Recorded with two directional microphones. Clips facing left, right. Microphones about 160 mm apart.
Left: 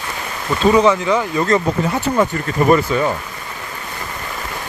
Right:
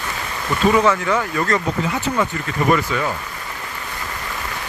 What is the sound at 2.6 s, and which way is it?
Speech, 35° left (ahead or behind).